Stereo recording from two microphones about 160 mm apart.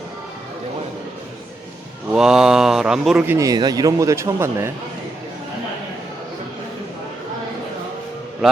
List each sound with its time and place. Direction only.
2.1 s speech: 5° right (ahead or behind)
3.2 s speech: 20° right (ahead or behind)